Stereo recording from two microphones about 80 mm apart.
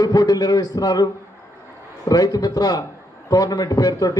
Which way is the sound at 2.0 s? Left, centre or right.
Left.